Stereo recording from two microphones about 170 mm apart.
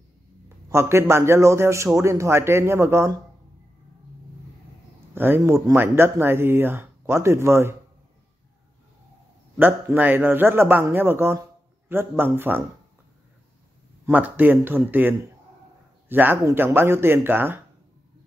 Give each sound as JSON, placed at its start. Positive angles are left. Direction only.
{"t": 0.7, "sound": "speech", "side_deg": -15}
{"t": 5.1, "sound": "speech", "side_deg": -10}
{"t": 9.6, "sound": "speech", "side_deg": -10}
{"t": 14.0, "sound": "speech", "side_deg": -10}